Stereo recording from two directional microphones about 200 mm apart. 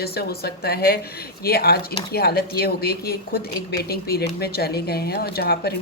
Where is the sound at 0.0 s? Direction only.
50° left (ahead or behind).